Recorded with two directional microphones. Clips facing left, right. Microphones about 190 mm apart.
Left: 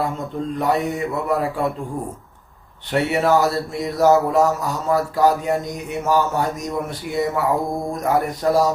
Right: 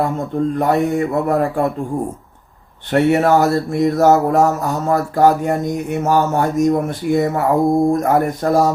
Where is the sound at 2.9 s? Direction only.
50° right (ahead or behind).